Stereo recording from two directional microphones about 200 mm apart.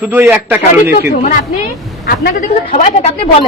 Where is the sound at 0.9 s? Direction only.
45° left (ahead or behind).